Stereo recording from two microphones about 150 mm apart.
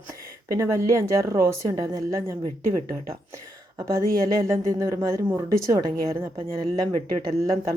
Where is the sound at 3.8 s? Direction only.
20° right (ahead or behind).